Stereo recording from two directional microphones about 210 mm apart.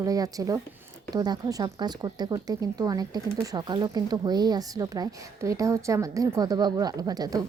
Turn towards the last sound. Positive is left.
turn(degrees=-20)  # may be behind; listen again after turning